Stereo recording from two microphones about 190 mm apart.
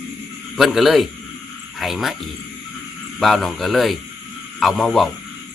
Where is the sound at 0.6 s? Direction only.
Centre (ahead or behind).